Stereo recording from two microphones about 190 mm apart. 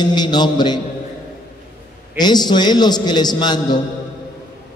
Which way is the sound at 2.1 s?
20° left (ahead or behind).